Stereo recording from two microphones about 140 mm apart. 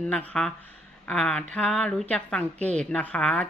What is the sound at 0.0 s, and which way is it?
A woman's voice, 5° left (ahead or behind).